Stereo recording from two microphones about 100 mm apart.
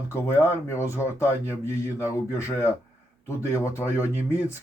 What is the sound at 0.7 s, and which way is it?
Speech, 30° left (ahead or behind).